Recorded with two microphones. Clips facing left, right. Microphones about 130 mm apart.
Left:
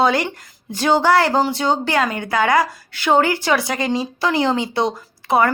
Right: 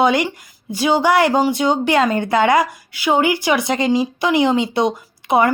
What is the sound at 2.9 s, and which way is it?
A woman's voice, 10° right (ahead or behind).